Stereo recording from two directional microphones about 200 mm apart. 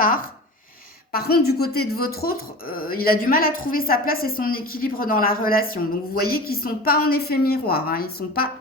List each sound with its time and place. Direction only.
1.5 s speech: 50° left (ahead or behind)